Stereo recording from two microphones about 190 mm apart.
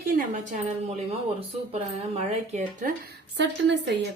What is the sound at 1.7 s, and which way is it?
Speech, 35° right (ahead or behind).